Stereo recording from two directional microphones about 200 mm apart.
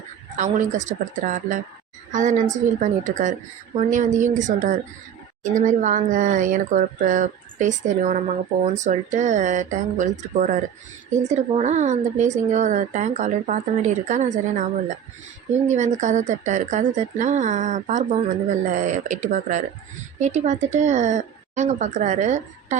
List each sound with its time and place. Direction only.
0.3 s a woman's voice: 40° right (ahead or behind)